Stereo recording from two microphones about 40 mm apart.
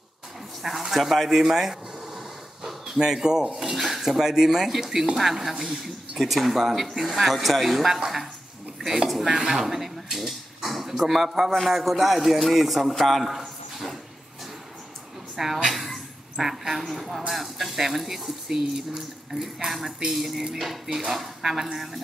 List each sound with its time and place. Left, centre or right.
0.6 s speech: centre
1.4 s a sound: centre
3.0 s speech: centre
3.5 s speech: centre
15.3 s a woman's voice: centre